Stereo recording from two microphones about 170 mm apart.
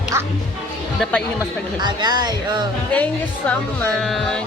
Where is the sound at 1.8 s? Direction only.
25° right (ahead or behind).